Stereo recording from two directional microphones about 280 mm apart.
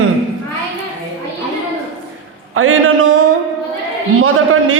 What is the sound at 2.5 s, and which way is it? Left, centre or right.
Speech, right.